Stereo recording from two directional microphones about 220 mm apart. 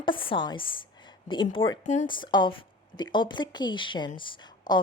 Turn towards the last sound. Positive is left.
turn(degrees=20)  # may be behind; listen again after turning